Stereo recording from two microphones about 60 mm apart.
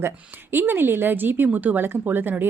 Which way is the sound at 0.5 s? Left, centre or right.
Right.